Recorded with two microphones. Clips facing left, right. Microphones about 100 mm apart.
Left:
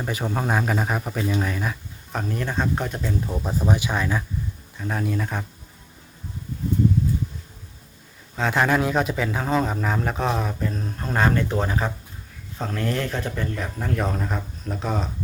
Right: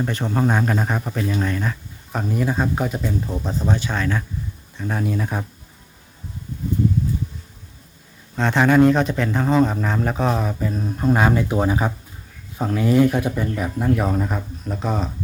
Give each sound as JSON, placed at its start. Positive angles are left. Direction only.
{"t": 0.0, "sound": "speech", "side_deg": 5}
{"t": 4.8, "sound": "speech", "side_deg": 0}
{"t": 8.4, "sound": "speech", "side_deg": 0}